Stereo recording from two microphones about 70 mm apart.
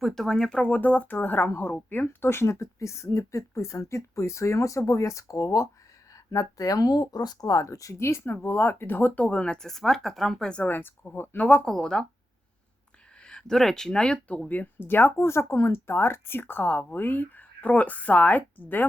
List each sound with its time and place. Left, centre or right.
0.0 s speech: centre
0.7 s speech: left
9.2 s speech: centre
10.5 s speech: left
11.5 s speech: centre
13.2 s speech: centre; by 18.9 s left